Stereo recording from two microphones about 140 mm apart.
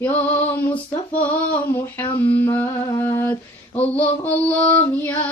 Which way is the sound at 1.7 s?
15° left (ahead or behind).